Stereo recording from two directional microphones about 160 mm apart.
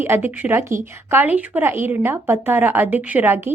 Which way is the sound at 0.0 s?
15° right (ahead or behind).